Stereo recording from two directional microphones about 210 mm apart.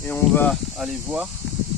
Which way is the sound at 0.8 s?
Centre (ahead or behind).